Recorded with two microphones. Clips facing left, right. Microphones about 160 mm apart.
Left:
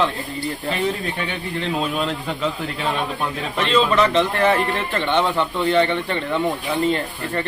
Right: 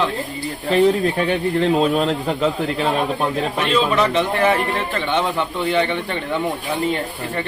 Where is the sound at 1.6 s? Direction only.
40° right (ahead or behind).